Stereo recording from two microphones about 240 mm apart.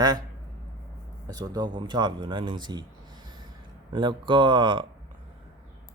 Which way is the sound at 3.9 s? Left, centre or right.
Centre.